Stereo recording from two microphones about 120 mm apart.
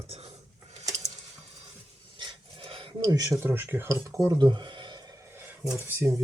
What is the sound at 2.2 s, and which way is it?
Pant, 45° right (ahead or behind).